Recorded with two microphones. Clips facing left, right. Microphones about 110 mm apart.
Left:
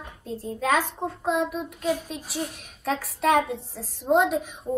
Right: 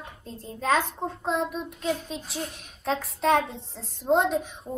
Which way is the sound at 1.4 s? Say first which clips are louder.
Left 2 dB; 55° left (ahead or behind).